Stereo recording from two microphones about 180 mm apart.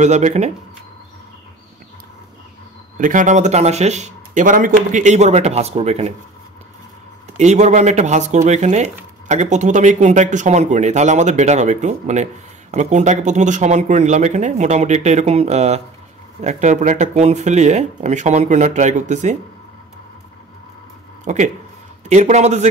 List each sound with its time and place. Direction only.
0.0 s speech: 40° right (ahead or behind)
3.0 s speech: 45° right (ahead or behind)
7.3 s speech: 40° right (ahead or behind)
21.2 s speech: 40° right (ahead or behind)